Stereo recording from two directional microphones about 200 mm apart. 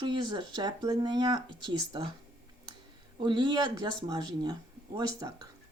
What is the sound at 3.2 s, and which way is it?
Speech, 25° right (ahead or behind).